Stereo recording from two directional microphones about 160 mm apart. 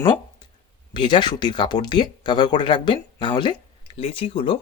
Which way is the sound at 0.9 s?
30° left (ahead or behind).